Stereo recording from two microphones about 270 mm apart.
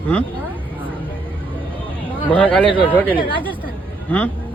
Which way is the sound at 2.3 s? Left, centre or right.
Centre.